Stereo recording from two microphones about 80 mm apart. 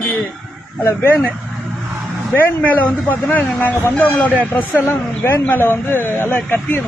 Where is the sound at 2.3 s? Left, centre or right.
Left.